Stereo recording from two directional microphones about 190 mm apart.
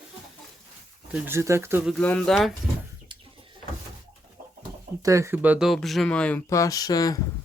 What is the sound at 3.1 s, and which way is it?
Chicken, 25° right (ahead or behind).